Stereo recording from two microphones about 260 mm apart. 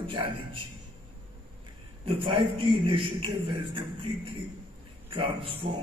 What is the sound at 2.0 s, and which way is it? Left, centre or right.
A man's voice, centre.